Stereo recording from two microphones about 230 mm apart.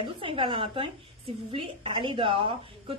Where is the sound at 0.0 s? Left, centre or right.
Right.